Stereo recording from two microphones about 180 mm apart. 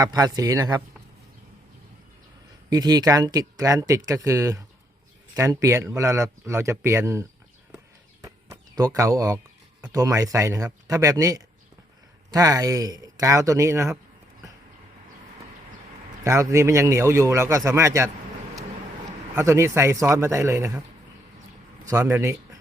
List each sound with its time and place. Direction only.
0.0 s speech: 20° right (ahead or behind)
2.6 s speech: 20° right (ahead or behind)
8.2 s a sound: 20° right (ahead or behind)
9.9 s speech: 15° right (ahead or behind)
16.2 s speech: 15° right (ahead or behind)
19.4 s speech: 15° right (ahead or behind)
21.8 s speech: 15° right (ahead or behind)